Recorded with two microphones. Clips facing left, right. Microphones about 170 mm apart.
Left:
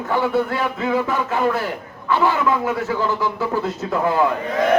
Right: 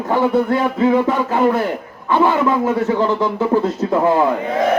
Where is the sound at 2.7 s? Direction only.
30° right (ahead or behind).